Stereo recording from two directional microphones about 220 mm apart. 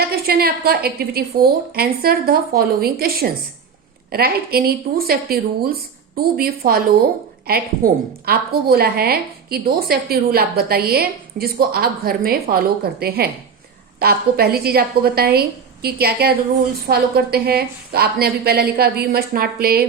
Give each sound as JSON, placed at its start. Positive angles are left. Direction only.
{"t": 0.0, "sound": "a woman's voice", "side_deg": -45}